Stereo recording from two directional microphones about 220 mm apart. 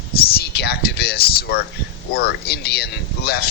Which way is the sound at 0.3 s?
45° left (ahead or behind).